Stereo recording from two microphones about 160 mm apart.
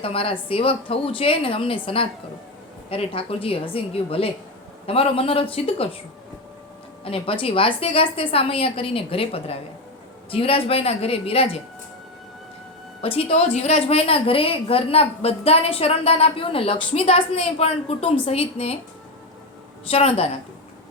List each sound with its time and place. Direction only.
0.0 s a woman's voice: 35° left (ahead or behind)
7.0 s a woman's voice: 35° left (ahead or behind)
13.0 s a woman's voice: 35° left (ahead or behind)
19.9 s a woman's voice: 40° left (ahead or behind)